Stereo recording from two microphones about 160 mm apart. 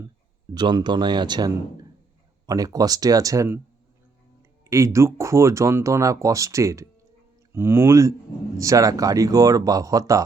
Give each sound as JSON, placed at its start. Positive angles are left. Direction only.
{"t": 0.5, "sound": "speech", "side_deg": -25}
{"t": 4.7, "sound": "speech", "side_deg": -20}